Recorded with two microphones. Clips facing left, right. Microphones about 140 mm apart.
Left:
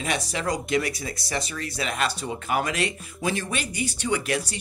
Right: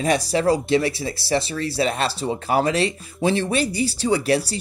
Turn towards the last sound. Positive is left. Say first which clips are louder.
# right 6 dB
turn(degrees=-35)  # may be behind; listen again after turning